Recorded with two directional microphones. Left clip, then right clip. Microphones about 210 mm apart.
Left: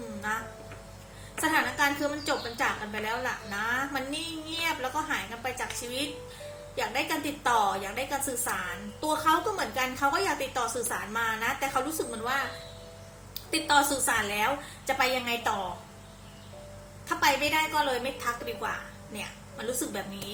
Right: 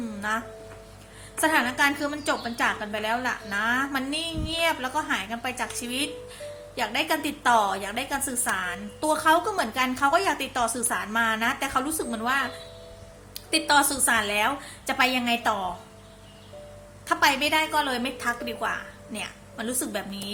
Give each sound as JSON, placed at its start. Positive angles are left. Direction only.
{"t": 1.4, "sound": "a woman's voice", "side_deg": -45}
{"t": 17.1, "sound": "a woman's voice", "side_deg": -50}